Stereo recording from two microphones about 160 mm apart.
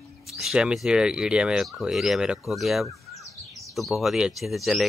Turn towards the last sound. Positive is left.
turn(degrees=0)  # may be behind; listen again after turning